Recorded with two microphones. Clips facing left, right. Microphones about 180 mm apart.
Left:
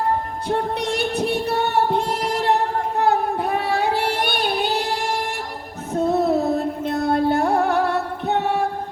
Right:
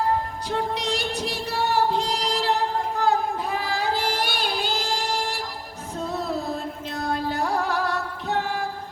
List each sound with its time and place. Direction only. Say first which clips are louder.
0.5 s music: left 4 dB; 60° left (ahead or behind)